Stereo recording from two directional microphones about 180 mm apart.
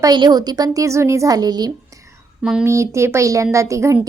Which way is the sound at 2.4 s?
5° right (ahead or behind).